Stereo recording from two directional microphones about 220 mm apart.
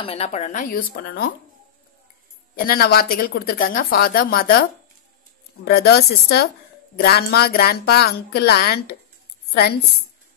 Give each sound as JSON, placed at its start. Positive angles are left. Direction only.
{"t": 0.0, "sound": "speech", "side_deg": 25}
{"t": 2.5, "sound": "speech", "side_deg": 40}
{"t": 5.7, "sound": "a woman's voice", "side_deg": 45}